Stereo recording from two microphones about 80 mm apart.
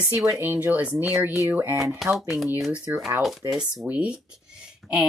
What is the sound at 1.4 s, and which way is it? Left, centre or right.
Speech, right.